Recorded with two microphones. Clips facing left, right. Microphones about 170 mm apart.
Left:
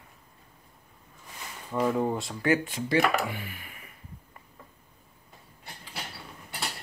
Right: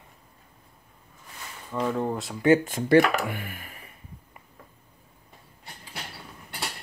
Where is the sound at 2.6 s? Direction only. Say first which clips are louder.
Right 6 dB; 50° right (ahead or behind).